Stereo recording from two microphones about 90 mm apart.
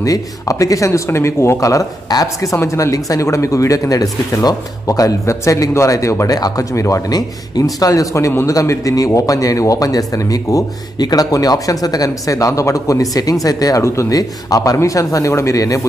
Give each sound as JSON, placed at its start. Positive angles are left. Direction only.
{"t": 0.0, "sound": "speech", "side_deg": 40}